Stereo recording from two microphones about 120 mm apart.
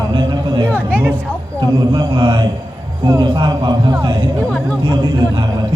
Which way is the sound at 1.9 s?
35° right (ahead or behind).